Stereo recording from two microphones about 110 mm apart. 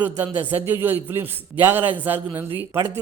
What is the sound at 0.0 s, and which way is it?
A man's voice, 15° right (ahead or behind).